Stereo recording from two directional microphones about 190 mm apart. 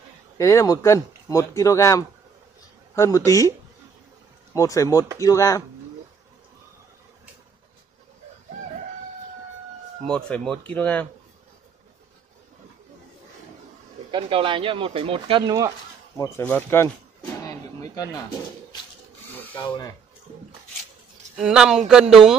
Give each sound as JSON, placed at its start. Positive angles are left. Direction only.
{"t": 0.4, "sound": "speech", "side_deg": 15}
{"t": 4.6, "sound": "speech", "side_deg": 15}
{"t": 10.0, "sound": "speech", "side_deg": 5}
{"t": 14.1, "sound": "speech", "side_deg": -25}
{"t": 16.3, "sound": "speech", "side_deg": 10}
{"t": 17.4, "sound": "a sound", "side_deg": 15}
{"t": 21.4, "sound": "speech", "side_deg": -5}